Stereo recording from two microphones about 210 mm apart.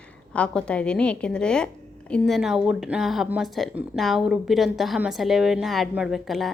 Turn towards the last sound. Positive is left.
turn(degrees=0)  # may be behind; listen again after turning